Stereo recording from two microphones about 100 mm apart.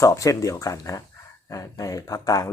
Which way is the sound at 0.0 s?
35° left (ahead or behind).